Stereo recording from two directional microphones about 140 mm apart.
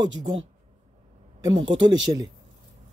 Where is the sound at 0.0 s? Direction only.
35° right (ahead or behind).